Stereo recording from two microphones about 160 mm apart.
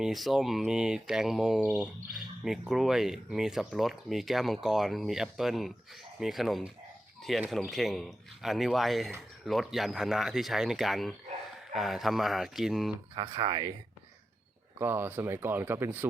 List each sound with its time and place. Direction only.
0.0 s speech: centre (ahead or behind)
13.1 s speech: 30° right (ahead or behind)
14.8 s speech: 15° right (ahead or behind)